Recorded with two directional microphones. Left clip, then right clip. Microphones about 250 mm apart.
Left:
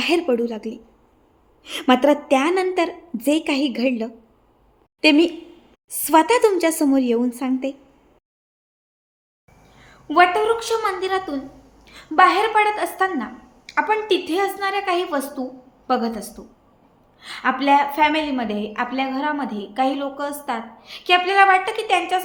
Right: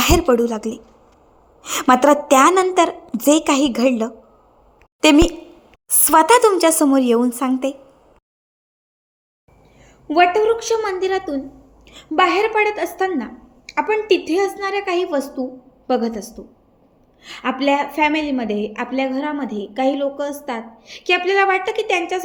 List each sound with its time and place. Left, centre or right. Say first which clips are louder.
0.0 s a woman's voice: right 4 dB; centre
9.8 s a woman's voice: right 1 dB; centre